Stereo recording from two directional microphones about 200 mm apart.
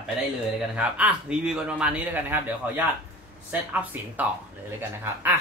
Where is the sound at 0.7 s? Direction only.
5° right (ahead or behind).